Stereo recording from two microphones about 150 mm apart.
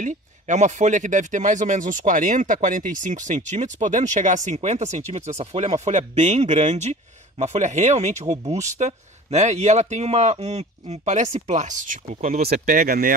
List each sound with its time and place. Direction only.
0.0 s speech: 55° right (ahead or behind)
12.5 s speech: 60° right (ahead or behind)